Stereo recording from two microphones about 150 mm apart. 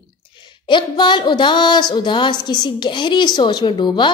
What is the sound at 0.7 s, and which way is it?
A woman's voice, 30° left (ahead or behind).